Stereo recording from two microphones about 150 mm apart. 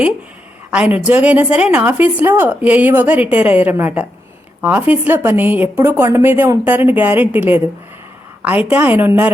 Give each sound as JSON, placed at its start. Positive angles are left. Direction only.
{"t": 0.7, "sound": "a woman's voice", "side_deg": -10}